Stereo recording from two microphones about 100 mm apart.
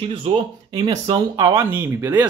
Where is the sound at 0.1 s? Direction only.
55° right (ahead or behind).